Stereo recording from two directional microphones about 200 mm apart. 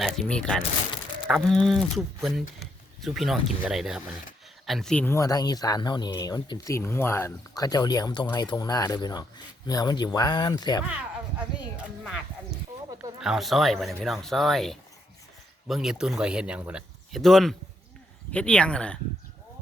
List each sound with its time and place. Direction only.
0.0 s speech: 5° left (ahead or behind); by 10.8 s 20° left (ahead or behind)
11.3 s speech: 5° right (ahead or behind)